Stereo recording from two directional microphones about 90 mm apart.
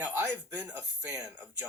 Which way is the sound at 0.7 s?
35° right (ahead or behind).